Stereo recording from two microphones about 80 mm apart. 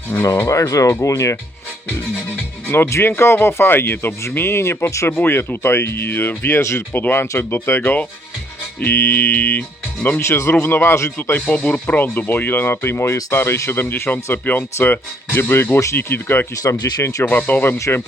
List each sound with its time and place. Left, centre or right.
0.2 s speech: left
2.7 s speech: left
10.2 s speech: left
11.2 s speech: left
17.0 s speech: left
17.2 s speech: left